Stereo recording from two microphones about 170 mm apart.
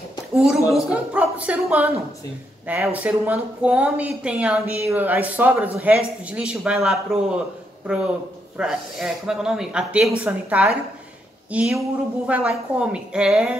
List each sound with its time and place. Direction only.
0.6 s speech: 20° left (ahead or behind)
0.8 s a man's voice: 5° right (ahead or behind)